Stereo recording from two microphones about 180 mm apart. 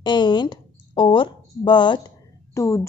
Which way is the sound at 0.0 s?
25° left (ahead or behind).